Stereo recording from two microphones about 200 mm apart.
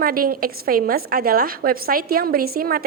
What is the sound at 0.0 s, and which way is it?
A woman's voice, 45° right (ahead or behind).